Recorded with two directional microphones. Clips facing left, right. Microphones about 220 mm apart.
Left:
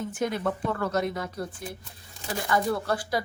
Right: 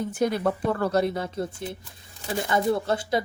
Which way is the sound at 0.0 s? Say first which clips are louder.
Right 4 dB; 35° right (ahead or behind).